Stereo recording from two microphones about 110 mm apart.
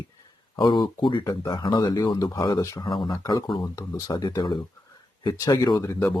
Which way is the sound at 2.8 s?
45° left (ahead or behind).